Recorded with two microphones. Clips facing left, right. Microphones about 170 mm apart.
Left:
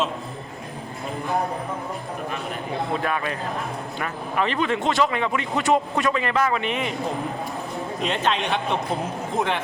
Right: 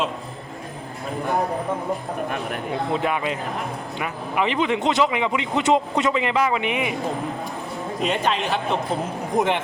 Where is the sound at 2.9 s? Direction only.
15° right (ahead or behind).